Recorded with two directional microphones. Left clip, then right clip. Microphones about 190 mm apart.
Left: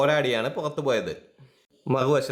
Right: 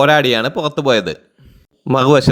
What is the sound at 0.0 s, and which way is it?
Speech, 35° right (ahead or behind).